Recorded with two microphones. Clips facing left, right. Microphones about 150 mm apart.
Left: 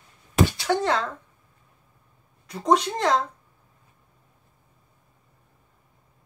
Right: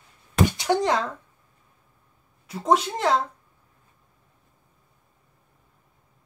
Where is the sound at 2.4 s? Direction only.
5° right (ahead or behind).